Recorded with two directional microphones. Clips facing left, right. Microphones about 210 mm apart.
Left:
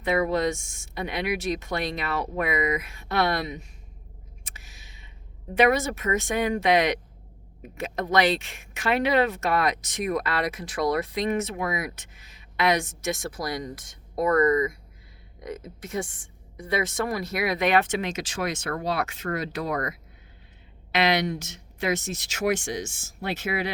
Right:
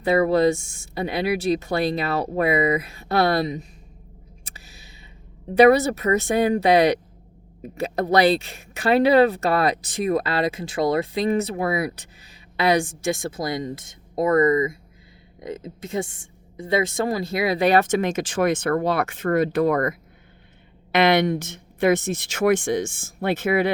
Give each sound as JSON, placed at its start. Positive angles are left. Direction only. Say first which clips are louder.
{"t": 0.0, "sound": "speech", "louder": "right 6 dB", "side_deg": -35}
{"t": 4.4, "sound": "a sound", "louder": "right 4 dB", "side_deg": -35}
{"t": 5.5, "sound": "speech", "louder": "right 7 dB", "side_deg": -35}